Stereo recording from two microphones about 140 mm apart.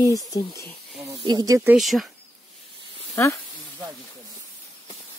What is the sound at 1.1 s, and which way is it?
Speech, 25° right (ahead or behind).